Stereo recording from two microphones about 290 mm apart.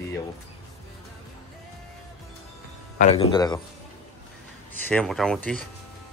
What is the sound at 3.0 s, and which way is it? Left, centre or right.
Speech, left.